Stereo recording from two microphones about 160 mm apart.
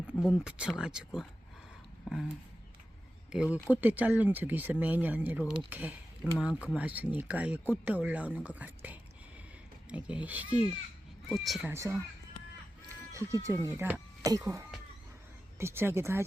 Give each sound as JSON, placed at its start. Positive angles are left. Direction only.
{"t": 0.1, "sound": "speech", "side_deg": -5}
{"t": 3.3, "sound": "speech", "side_deg": -5}
{"t": 11.7, "sound": "speech", "side_deg": -15}
{"t": 13.1, "sound": "speech", "side_deg": -20}